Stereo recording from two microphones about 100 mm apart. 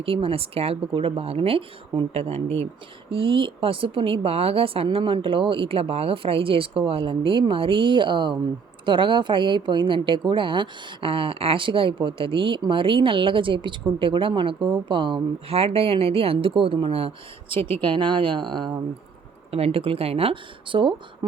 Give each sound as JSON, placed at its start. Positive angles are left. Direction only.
{"t": 0.0, "sound": "speech", "side_deg": -70}
{"t": 3.1, "sound": "a woman's voice", "side_deg": -60}
{"t": 17.7, "sound": "a woman's voice", "side_deg": -55}
{"t": 19.5, "sound": "speech", "side_deg": -80}